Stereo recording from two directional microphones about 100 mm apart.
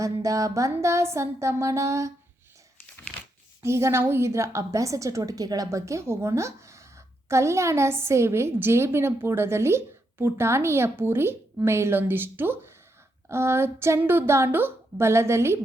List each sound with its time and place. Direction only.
0.0 s a woman's voice: 35° right (ahead or behind)
3.6 s a woman's voice: 30° right (ahead or behind)